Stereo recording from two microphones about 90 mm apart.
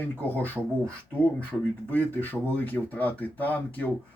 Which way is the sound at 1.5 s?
20° left (ahead or behind).